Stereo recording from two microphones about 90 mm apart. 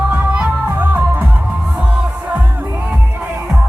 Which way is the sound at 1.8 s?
10° right (ahead or behind).